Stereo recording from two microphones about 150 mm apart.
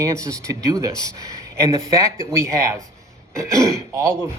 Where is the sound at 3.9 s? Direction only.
20° right (ahead or behind).